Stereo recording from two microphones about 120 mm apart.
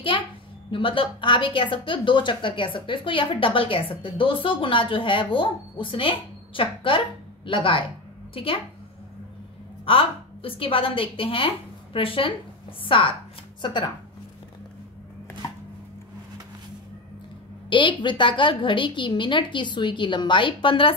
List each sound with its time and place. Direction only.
0.7 s a woman's voice: 45° left (ahead or behind)
9.8 s a woman's voice: 50° left (ahead or behind)
17.6 s a woman's voice: 40° left (ahead or behind)